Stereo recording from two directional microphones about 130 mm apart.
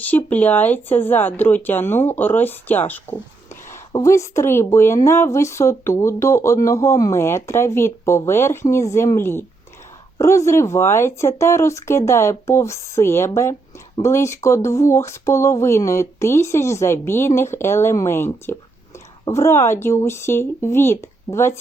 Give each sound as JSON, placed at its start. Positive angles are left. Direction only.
{"t": 0.0, "sound": "speech", "side_deg": 15}
{"t": 19.3, "sound": "speech", "side_deg": 20}